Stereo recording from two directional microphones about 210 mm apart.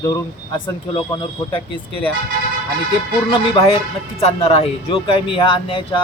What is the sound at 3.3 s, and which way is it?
A man's voice, 25° left (ahead or behind).